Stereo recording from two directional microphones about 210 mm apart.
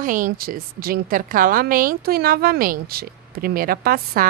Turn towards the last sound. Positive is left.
turn(degrees=-45)  # may be behind; listen again after turning